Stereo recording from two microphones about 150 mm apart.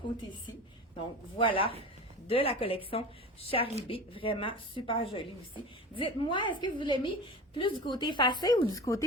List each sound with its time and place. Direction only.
1.4 s a woman's voice: 35° left (ahead or behind)